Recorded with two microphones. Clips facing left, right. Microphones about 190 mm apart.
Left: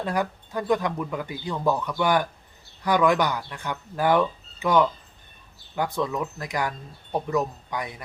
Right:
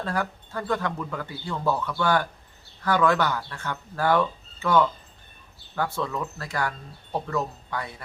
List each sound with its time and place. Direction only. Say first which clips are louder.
0.0 s speech: left 2 dB; 15° left (ahead or behind)